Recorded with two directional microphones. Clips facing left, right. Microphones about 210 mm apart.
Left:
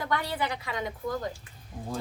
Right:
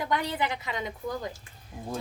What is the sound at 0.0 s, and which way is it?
Speech, 20° right (ahead or behind).